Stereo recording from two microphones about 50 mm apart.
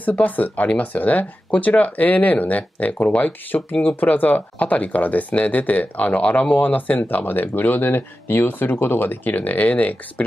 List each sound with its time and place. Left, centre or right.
0.0 s speech: left